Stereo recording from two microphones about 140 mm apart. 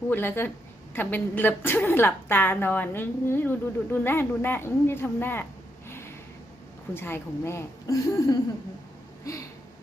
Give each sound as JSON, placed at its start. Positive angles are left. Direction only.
{"t": 0.1, "sound": "a woman's voice", "side_deg": 15}
{"t": 5.9, "sound": "a sound", "side_deg": 20}
{"t": 6.9, "sound": "a woman's voice", "side_deg": 15}